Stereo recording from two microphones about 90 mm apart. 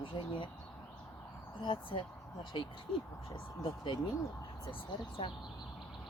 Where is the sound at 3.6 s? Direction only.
65° left (ahead or behind).